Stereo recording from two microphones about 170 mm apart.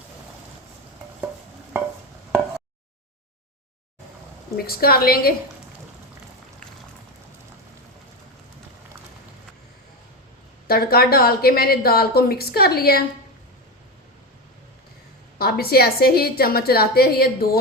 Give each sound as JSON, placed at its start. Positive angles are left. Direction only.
{"t": 4.5, "sound": "a woman's voice", "side_deg": 65}
{"t": 10.7, "sound": "a woman's voice", "side_deg": 60}
{"t": 15.4, "sound": "a woman's voice", "side_deg": 65}